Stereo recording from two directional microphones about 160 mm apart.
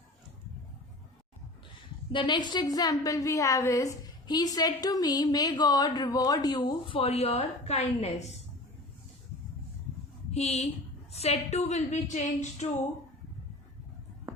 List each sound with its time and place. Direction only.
2.1 s a woman's voice: 30° left (ahead or behind)
10.3 s a woman's voice: 40° left (ahead or behind)